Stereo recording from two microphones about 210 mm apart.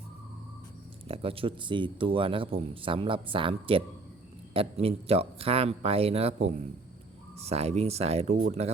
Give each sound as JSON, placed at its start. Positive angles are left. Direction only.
{"t": 1.0, "sound": "speech", "side_deg": -25}